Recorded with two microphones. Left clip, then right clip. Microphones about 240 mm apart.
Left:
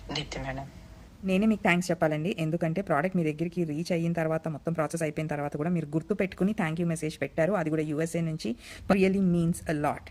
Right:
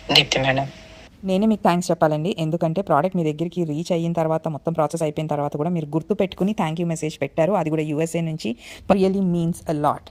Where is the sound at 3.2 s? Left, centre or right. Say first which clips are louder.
Right 6 dB; right.